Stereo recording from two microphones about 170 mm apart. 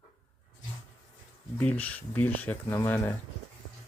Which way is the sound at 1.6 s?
10° left (ahead or behind).